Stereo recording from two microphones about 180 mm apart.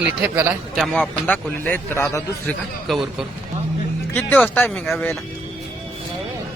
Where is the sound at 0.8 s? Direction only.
5° left (ahead or behind).